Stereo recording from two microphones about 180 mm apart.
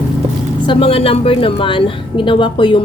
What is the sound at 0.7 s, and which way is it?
A woman's voice, 30° left (ahead or behind).